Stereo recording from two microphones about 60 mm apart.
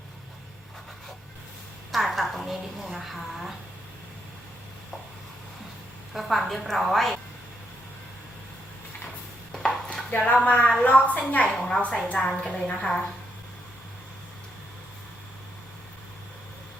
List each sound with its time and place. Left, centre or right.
1.9 s a woman's voice: centre
6.1 s a woman's voice: centre
9.5 s chopping: centre
10.1 s a woman's voice: left